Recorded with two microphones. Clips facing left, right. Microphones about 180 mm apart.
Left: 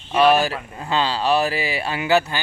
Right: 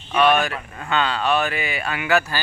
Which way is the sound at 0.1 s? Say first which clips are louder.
Left 2 dB; 30° left (ahead or behind).